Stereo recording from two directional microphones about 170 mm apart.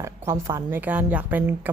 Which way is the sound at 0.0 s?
15° right (ahead or behind).